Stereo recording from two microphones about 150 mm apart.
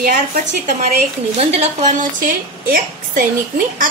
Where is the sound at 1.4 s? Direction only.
45° right (ahead or behind); by 3.2 s 65° right (ahead or behind).